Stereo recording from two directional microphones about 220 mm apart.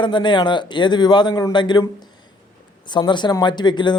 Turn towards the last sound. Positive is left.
turn(degrees=20)  # may be behind; listen again after turning